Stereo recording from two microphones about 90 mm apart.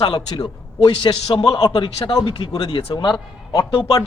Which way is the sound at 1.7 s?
70° left (ahead or behind).